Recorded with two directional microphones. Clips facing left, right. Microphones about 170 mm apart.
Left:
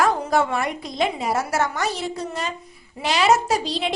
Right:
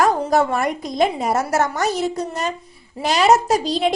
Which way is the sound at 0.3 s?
40° right (ahead or behind).